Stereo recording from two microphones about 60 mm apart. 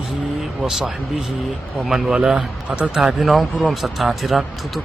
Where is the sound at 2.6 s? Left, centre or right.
Right.